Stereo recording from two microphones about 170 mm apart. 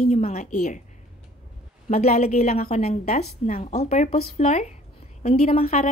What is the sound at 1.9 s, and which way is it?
Speech, 60° left (ahead or behind).